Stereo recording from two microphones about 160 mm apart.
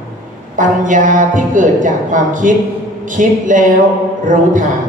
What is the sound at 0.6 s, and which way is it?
A woman's voice, 55° right (ahead or behind).